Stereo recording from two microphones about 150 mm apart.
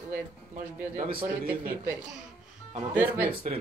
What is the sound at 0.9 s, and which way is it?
Speech, 70° right (ahead or behind).